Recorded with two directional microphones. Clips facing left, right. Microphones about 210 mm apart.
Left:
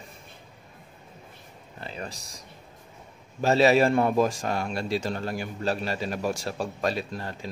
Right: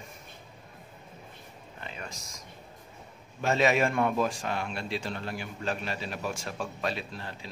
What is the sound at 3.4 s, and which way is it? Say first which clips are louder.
A man's voice: left 5 dB; 35° left (ahead or behind).